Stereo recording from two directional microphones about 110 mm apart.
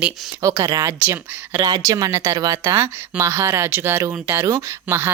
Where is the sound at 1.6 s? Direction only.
35° right (ahead or behind); by 5.1 s 20° right (ahead or behind).